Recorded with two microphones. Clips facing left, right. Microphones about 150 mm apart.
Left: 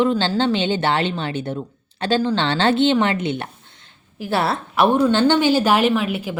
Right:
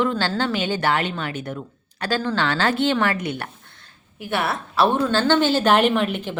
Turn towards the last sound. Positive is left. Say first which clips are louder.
# left 1 dB
turn(degrees=5)  # may be behind; listen again after turning